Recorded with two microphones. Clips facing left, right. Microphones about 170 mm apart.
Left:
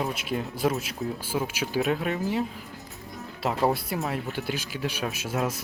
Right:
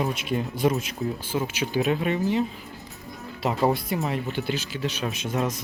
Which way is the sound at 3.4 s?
Centre (ahead or behind).